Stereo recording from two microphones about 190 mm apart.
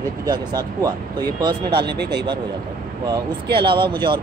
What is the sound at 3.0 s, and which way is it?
Speech, 25° right (ahead or behind).